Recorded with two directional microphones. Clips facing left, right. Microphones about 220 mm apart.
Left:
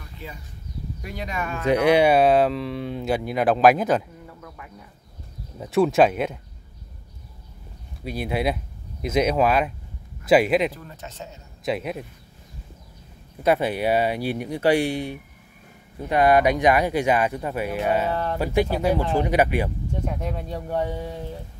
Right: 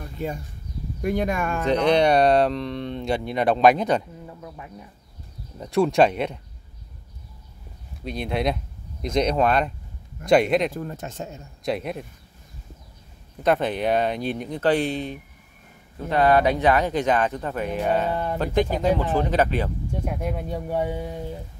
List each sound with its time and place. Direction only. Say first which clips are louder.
0.2 s speech: right 10 dB; 45° right (ahead or behind)
1.6 s speech: left 2 dB; 10° left (ahead or behind)
5.6 s speech: left 1 dB; centre (ahead or behind)
8.0 s speech: even; 5° left (ahead or behind)
10.7 s speech: right 8 dB; 50° right (ahead or behind)
11.6 s speech: even; centre (ahead or behind)
13.4 s speech: left 1 dB; 10° left (ahead or behind)
18.1 s speech: even; 10° right (ahead or behind)
18.4 s speech: even; 10° left (ahead or behind)
19.9 s speech: right 1 dB; 10° right (ahead or behind)